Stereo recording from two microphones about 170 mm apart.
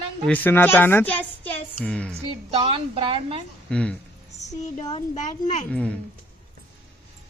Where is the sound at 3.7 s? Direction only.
5° left (ahead or behind).